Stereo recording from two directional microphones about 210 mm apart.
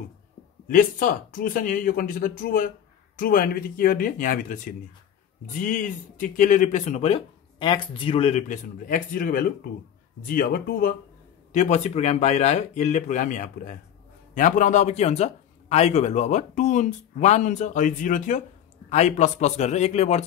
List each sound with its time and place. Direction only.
0.7 s speech: 40° left (ahead or behind)